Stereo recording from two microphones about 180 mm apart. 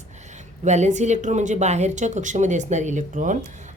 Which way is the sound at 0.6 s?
40° right (ahead or behind).